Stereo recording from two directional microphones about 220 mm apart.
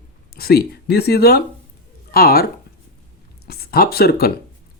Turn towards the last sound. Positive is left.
turn(degrees=45)  # may be behind; listen again after turning